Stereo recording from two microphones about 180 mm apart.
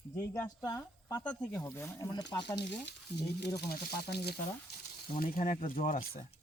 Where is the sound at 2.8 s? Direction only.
70° left (ahead or behind).